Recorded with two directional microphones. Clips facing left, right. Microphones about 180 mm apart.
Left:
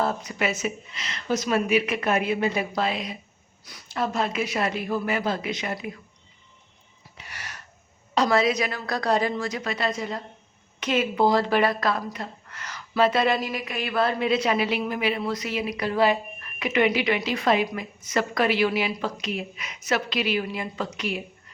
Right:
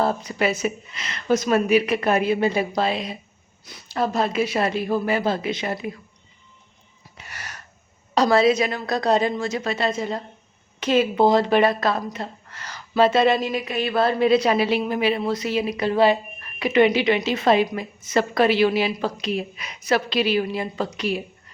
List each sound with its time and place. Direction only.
0.0 s a woman's voice: 30° right (ahead or behind)
0.9 s a woman's voice: 55° right (ahead or behind); by 5.9 s 30° right (ahead or behind)
7.2 s a sound: 45° right (ahead or behind)
8.1 s speech: 35° right (ahead or behind)